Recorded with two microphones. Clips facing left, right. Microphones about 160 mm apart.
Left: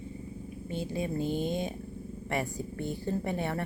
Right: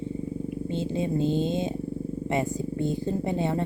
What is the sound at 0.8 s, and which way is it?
Speech, 25° right (ahead or behind).